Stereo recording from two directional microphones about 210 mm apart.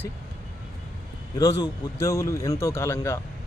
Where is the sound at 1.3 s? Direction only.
20° left (ahead or behind).